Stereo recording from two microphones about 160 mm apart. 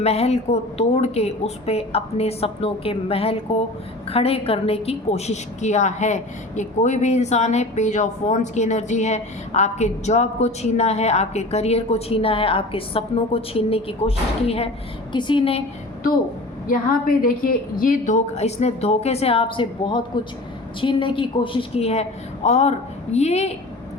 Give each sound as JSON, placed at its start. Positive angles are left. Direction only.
{"t": 0.0, "sound": "a woman's voice", "side_deg": 40}
{"t": 16.6, "sound": "a woman's voice", "side_deg": 60}